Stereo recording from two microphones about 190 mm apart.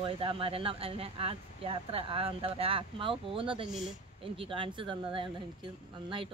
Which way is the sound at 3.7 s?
Centre (ahead or behind).